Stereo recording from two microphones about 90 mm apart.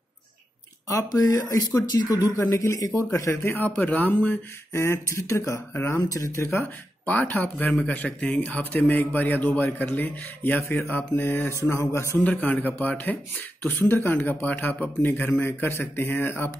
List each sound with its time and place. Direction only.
0.8 s speech: 40° left (ahead or behind)
2.5 s speech: 35° left (ahead or behind)
7.1 s speech: 20° left (ahead or behind)
12.2 s speech: 20° left (ahead or behind)